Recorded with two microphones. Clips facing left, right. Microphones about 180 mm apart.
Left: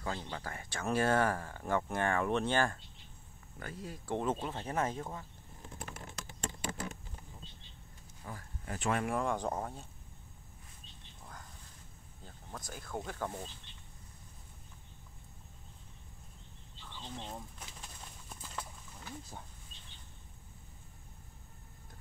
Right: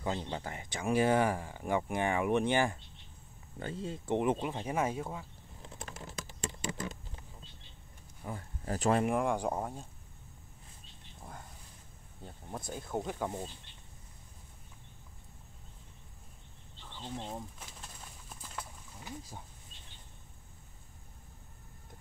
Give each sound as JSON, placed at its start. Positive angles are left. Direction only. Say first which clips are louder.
{"t": 0.0, "sound": "speech", "louder": "right 4 dB", "side_deg": -20}
{"t": 3.5, "sound": "speech", "louder": "right 6 dB", "side_deg": -25}
{"t": 8.2, "sound": "a sound", "louder": "right 5 dB", "side_deg": -25}
{"t": 8.7, "sound": "speech", "louder": "right 5 dB", "side_deg": -40}
{"t": 9.0, "sound": "speech", "louder": "right 3 dB", "side_deg": -15}
{"t": 12.2, "sound": "speech", "louder": "right 5 dB", "side_deg": -25}
{"t": 16.9, "sound": "speech", "louder": "right 4 dB", "side_deg": -10}
{"t": 17.6, "sound": "bird", "louder": "even", "side_deg": 0}